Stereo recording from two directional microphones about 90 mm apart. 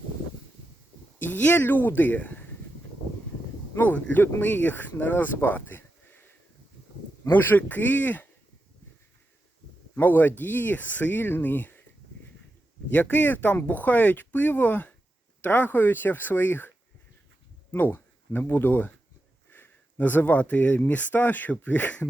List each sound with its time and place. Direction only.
1.2 s speech: 20° left (ahead or behind)
3.8 s speech: 20° left (ahead or behind)
9.9 s speech: 20° left (ahead or behind)
12.9 s speech: 15° left (ahead or behind)